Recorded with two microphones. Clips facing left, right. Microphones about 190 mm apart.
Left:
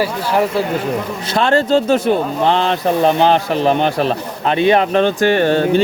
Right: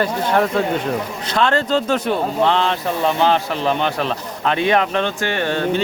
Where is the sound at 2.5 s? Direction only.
45° left (ahead or behind).